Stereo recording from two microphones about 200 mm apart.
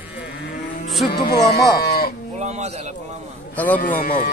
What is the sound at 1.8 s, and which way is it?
Cattle, 50° left (ahead or behind).